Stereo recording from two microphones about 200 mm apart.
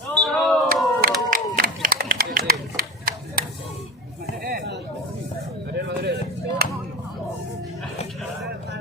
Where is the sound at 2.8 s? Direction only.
45° right (ahead or behind).